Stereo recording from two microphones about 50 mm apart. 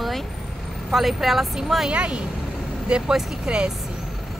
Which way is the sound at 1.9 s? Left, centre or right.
Right.